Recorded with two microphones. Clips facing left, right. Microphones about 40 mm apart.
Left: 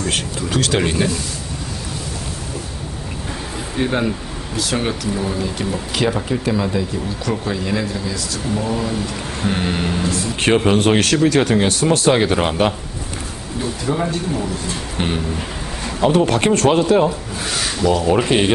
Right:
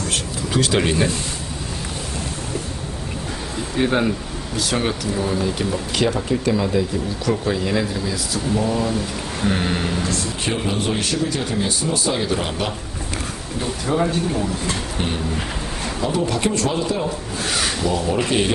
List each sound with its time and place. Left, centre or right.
0.5 s speech: centre
0.7 s speech: centre
3.7 s speech: centre
10.4 s speech: left
13.8 s speech: centre
16.0 s speech: left
18.0 s speech: left